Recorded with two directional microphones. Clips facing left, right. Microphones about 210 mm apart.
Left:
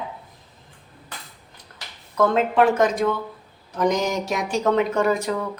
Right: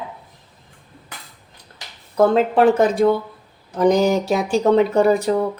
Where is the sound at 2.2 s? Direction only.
35° right (ahead or behind).